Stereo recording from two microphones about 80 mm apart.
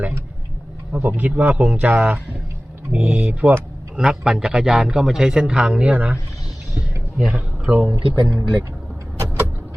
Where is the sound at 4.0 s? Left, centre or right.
Centre.